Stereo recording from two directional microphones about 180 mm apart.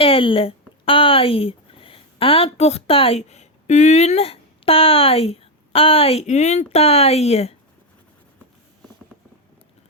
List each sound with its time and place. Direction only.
0.0 s speech: 30° left (ahead or behind)